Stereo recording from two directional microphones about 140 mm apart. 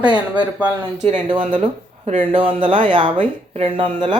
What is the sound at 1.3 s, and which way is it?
Speech, 40° right (ahead or behind).